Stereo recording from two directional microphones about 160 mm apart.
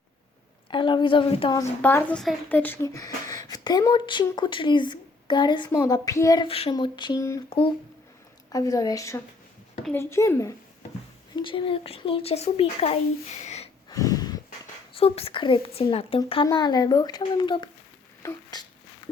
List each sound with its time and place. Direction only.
0.7 s a woman's voice: 30° left (ahead or behind)
1.8 s a woman's voice: 10° left (ahead or behind)
2.8 s speech: 20° left (ahead or behind)
8.5 s a woman's voice: 20° left (ahead or behind)
11.3 s a woman's voice: 30° left (ahead or behind)
13.9 s a sound: 20° left (ahead or behind)
14.9 s a woman's voice: 40° left (ahead or behind)
18.2 s a sound: 20° left (ahead or behind)